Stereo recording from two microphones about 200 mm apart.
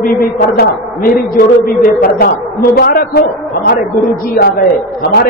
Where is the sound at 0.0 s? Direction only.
45° left (ahead or behind).